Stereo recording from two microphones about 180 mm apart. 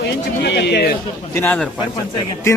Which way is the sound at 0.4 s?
70° left (ahead or behind).